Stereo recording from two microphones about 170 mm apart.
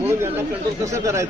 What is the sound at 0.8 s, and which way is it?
Speech, 20° right (ahead or behind).